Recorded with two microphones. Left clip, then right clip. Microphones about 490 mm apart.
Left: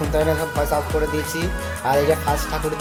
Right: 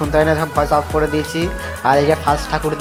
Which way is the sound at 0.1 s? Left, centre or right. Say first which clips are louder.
Right 6 dB; left.